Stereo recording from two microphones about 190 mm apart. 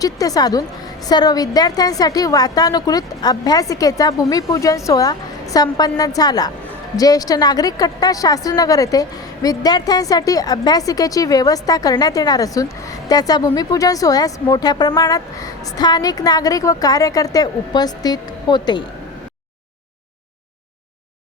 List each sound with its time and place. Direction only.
0.0 s speech: 20° left (ahead or behind)